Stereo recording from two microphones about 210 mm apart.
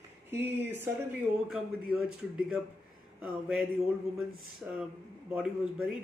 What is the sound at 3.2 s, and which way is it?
Speech, 5° right (ahead or behind).